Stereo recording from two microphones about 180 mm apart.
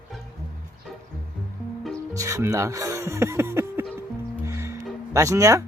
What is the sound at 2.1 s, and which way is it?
Speech, 20° right (ahead or behind).